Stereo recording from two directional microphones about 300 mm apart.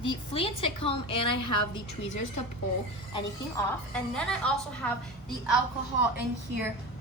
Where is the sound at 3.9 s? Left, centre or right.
Centre.